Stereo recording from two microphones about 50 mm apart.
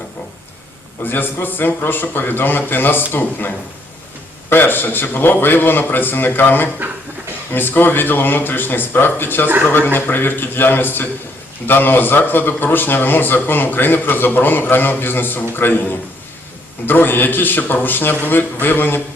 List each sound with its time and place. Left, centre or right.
1.0 s a man's voice: left